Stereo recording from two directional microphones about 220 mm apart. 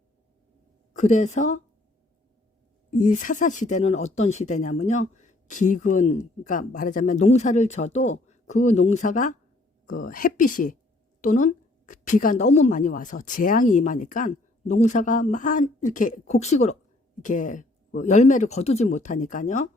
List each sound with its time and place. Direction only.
0.9 s speech: 30° left (ahead or behind)
2.9 s speech: 35° left (ahead or behind)